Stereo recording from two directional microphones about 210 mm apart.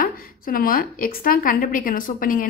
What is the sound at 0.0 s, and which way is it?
A woman's voice, 45° left (ahead or behind).